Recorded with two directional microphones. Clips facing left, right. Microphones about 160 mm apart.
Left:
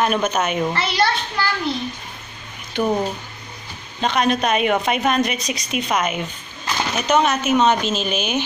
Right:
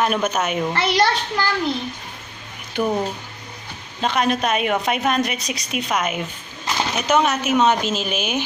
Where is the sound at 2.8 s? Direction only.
10° right (ahead or behind).